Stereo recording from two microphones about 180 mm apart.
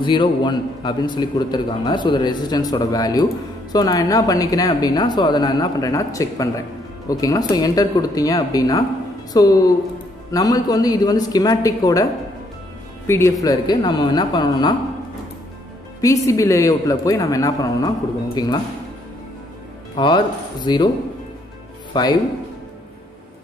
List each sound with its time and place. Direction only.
0.0 s a man's voice: 25° left (ahead or behind)
16.3 s a man's voice: 15° left (ahead or behind)
20.0 s a man's voice: 25° left (ahead or behind)
21.9 s speech: 20° left (ahead or behind)